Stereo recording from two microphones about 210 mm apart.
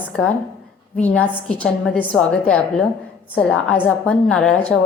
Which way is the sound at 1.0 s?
5° left (ahead or behind).